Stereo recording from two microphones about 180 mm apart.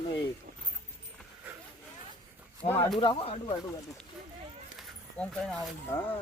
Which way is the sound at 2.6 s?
35° left (ahead or behind).